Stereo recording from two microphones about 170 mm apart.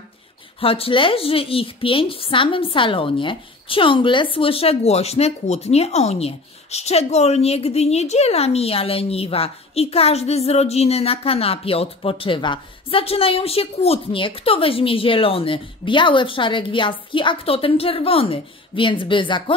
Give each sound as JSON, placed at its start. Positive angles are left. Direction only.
{"t": 0.6, "sound": "speech", "side_deg": 35}